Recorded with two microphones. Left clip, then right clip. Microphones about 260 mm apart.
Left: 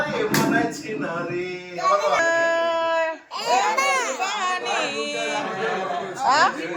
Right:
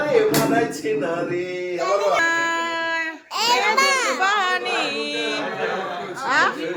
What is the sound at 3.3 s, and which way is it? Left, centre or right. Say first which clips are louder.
Babbling: right 3 dB; right.